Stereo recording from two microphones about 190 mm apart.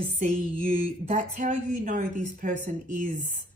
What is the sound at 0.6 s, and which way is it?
Speech, 30° right (ahead or behind).